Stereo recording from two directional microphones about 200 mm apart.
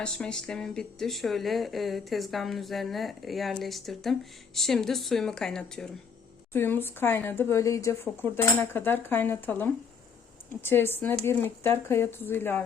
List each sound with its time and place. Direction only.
0.0 s speech: 5° left (ahead or behind)